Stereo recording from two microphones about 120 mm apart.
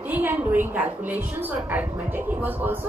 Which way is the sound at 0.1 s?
15° right (ahead or behind).